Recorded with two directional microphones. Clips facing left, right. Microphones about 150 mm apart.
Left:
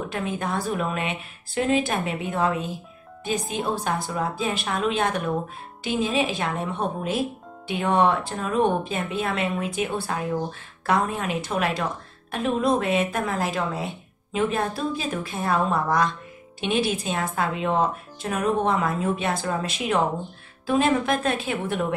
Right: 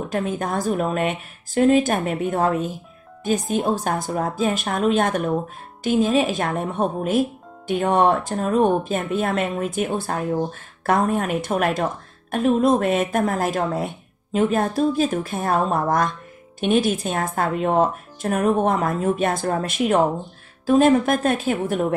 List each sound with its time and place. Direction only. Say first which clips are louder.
0.1 s speech: right 6 dB; 45° right (ahead or behind)